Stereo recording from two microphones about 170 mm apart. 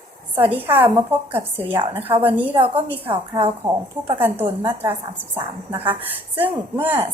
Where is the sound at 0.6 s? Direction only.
10° right (ahead or behind).